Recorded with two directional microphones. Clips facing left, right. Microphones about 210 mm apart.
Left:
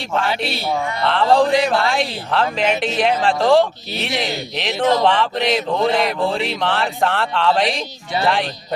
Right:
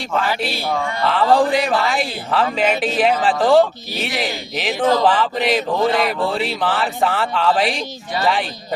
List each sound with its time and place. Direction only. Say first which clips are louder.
0.1 s a man's voice: even; centre (ahead or behind)